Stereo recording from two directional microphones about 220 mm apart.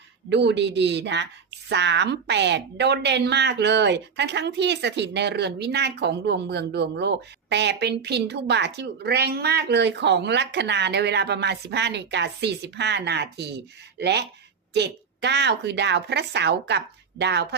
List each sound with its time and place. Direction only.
0.3 s a woman's voice: 50° right (ahead or behind)